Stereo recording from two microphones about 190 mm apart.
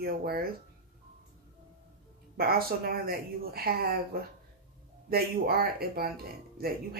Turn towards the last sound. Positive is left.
turn(degrees=-50)  # may be behind; listen again after turning